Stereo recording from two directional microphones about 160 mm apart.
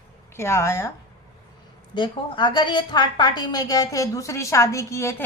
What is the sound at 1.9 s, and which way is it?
A woman's voice, 30° left (ahead or behind).